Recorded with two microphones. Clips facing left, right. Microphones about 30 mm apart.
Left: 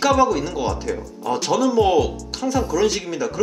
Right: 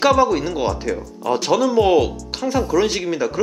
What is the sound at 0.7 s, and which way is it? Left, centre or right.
Speech, centre.